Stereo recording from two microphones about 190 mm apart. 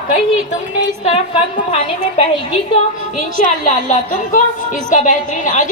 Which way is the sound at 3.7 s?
40° left (ahead or behind).